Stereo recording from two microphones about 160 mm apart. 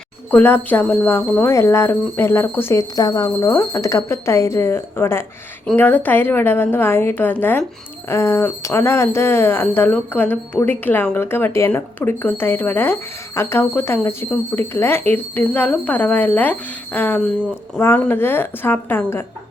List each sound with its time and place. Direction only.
0.3 s speech: 10° left (ahead or behind)